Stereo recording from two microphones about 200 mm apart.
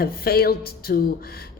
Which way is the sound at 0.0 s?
50° left (ahead or behind).